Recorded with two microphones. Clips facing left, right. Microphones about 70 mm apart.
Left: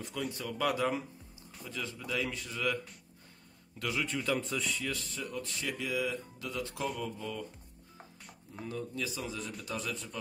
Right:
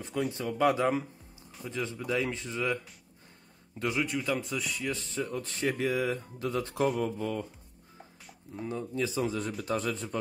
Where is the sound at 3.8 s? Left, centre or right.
Right.